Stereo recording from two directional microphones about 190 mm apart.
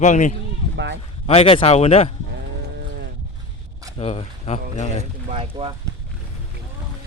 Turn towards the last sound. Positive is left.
turn(degrees=-30)  # may be behind; listen again after turning